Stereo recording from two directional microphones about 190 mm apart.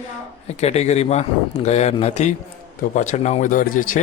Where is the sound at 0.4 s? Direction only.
35° left (ahead or behind).